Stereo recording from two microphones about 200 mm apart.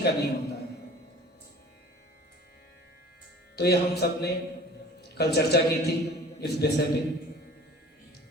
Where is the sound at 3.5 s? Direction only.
55° left (ahead or behind).